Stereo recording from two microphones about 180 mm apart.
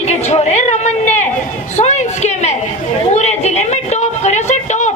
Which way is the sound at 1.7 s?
40° left (ahead or behind).